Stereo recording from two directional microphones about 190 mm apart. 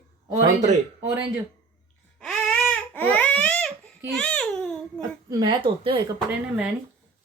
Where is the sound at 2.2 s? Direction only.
5° left (ahead or behind).